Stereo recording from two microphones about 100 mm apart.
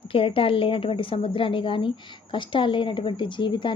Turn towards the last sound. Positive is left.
turn(degrees=55)  # may be behind; listen again after turning